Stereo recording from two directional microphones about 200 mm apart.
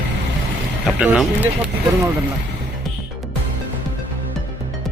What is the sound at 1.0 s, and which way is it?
Speech, 5° right (ahead or behind).